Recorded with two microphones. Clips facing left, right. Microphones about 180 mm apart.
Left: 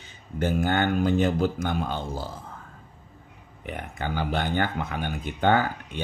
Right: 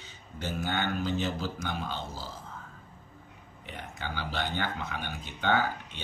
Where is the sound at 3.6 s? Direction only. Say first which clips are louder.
Left 7 dB; 55° left (ahead or behind).